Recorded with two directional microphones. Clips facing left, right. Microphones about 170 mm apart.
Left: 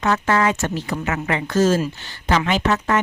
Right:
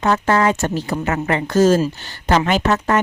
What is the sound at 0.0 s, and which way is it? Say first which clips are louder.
Speech: right 3 dB; 35° right (ahead or behind).